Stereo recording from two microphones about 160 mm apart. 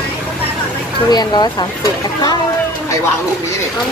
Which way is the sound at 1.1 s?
25° left (ahead or behind).